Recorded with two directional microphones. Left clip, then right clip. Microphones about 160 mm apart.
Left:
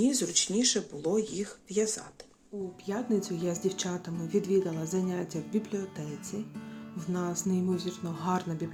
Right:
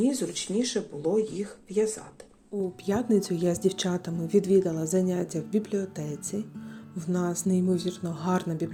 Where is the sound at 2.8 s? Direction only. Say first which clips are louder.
Right 5 dB; 40° right (ahead or behind).